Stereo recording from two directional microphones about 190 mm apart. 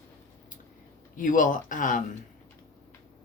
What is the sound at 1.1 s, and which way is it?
Speech, 45° left (ahead or behind).